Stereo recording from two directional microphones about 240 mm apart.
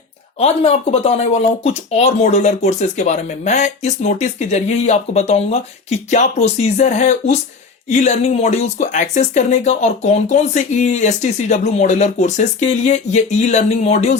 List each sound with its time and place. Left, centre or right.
0.3 s speech: left